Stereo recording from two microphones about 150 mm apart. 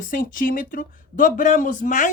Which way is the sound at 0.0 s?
65° left (ahead or behind).